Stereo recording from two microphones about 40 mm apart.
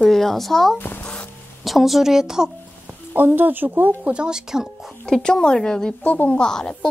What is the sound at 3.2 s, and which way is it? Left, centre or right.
Speech, right.